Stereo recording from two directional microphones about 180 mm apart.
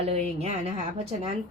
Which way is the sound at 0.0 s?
35° right (ahead or behind).